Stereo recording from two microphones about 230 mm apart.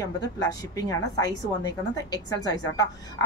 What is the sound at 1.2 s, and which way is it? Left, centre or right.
A woman's voice, centre.